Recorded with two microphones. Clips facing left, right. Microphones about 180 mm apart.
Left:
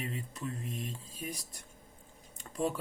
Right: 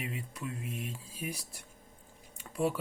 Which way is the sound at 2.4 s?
10° right (ahead or behind).